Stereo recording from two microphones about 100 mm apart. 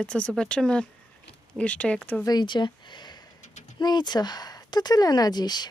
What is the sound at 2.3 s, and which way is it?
Speech, 45° left (ahead or behind).